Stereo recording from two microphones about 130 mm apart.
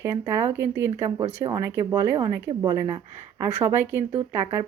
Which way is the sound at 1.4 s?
25° right (ahead or behind).